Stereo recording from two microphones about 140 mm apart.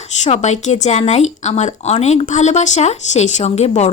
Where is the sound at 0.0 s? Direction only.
55° left (ahead or behind).